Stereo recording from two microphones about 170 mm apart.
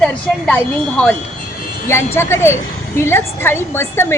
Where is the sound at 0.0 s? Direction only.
5° left (ahead or behind).